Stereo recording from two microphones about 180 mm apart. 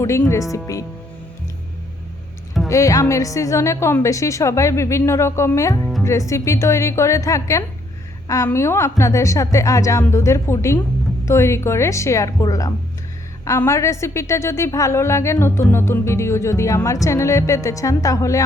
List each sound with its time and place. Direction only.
0.0 s a woman's voice: 15° left (ahead or behind)
2.6 s a woman's voice: 15° left (ahead or behind)